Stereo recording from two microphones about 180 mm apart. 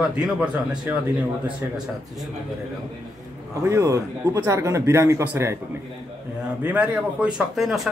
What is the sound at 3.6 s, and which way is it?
Speech, 15° right (ahead or behind).